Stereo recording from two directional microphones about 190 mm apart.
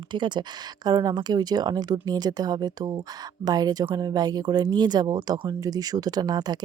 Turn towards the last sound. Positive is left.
turn(degrees=-20)  # may be behind; listen again after turning